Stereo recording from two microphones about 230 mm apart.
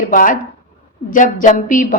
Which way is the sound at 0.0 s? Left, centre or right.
Left.